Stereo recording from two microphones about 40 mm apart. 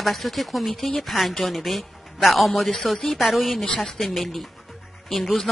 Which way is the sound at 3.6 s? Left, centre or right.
Left.